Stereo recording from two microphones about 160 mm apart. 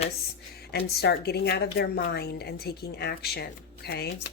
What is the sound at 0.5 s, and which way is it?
A woman's voice, 85° left.